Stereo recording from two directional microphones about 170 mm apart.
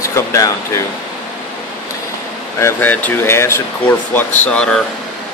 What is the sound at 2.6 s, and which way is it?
Speech, 10° left (ahead or behind).